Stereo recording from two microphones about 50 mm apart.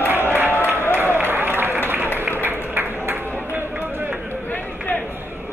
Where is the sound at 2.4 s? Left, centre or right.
Right.